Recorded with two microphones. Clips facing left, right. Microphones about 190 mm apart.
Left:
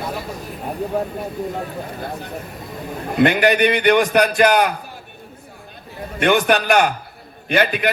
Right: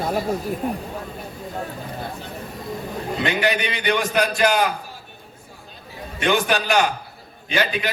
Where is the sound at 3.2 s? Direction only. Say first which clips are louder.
Left 8 dB; 60° left (ahead or behind).